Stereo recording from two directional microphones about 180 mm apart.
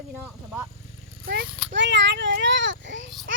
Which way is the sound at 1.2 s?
60° right (ahead or behind).